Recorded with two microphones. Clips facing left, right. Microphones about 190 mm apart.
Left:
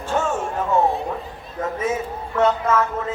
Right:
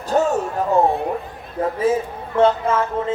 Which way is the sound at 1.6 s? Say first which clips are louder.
Right 5 dB; 30° right (ahead or behind).